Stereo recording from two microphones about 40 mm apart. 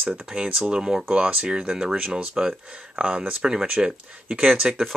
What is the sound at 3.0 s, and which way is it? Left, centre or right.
Speech, right.